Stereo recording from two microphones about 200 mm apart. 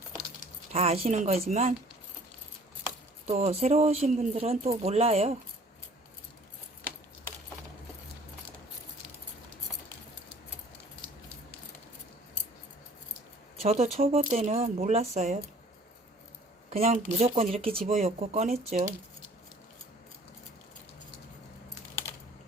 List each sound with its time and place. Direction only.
0.7 s speech: 30° right (ahead or behind)
3.2 s speech: 30° right (ahead or behind)
13.6 s speech: 30° right (ahead or behind)
16.6 s speech: 30° right (ahead or behind)